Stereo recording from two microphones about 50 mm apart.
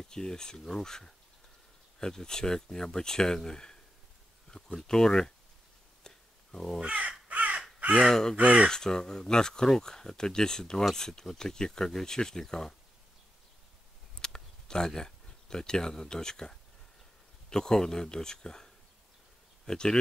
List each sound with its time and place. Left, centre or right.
0.1 s speech: centre
6.0 s a sound: centre
6.8 s crow: right
8.1 s speech: centre
8.4 s speech: right
8.6 s speech: centre
14.1 s a sound: centre
14.9 s speech: centre